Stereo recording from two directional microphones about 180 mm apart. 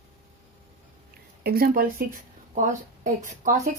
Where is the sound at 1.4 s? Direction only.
55° right (ahead or behind).